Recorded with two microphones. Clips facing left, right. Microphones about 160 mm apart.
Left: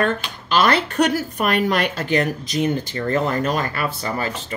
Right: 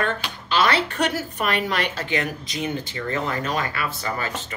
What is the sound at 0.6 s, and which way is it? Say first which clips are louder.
Speech: left 4 dB; 45° left (ahead or behind).